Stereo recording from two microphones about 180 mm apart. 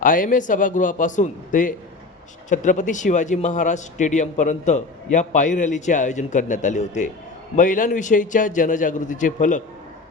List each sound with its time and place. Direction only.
0.0 s a man's voice: 50° left (ahead or behind)